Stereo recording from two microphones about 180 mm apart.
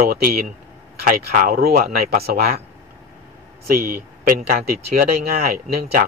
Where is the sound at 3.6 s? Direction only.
55° right (ahead or behind).